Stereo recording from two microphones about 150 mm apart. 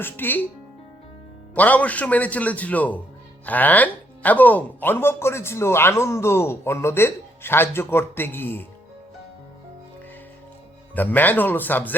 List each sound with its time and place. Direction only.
0.0 s speech: 15° left (ahead or behind)
1.5 s speech: 10° left (ahead or behind)
10.9 s speech: 10° left (ahead or behind)